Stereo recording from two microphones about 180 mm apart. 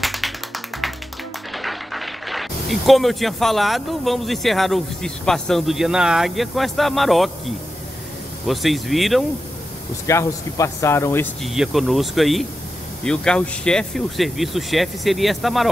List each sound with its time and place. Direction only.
0.0 s music: centre (ahead or behind)
1.5 s speech: centre (ahead or behind)
10.0 s speech: 15° left (ahead or behind)
11.4 s speech: centre (ahead or behind)